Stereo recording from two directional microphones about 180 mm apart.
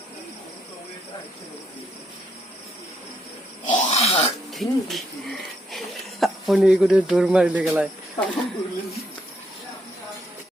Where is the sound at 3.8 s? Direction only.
35° left (ahead or behind).